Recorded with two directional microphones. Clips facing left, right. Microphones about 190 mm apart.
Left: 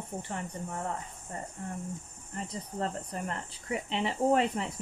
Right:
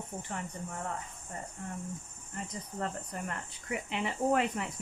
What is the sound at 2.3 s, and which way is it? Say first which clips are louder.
Speech: left 3 dB; 30° left (ahead or behind).